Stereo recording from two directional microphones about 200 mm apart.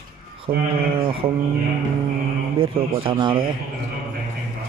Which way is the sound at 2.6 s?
25° right (ahead or behind).